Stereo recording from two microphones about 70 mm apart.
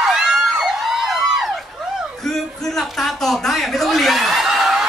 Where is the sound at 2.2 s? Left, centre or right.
Centre.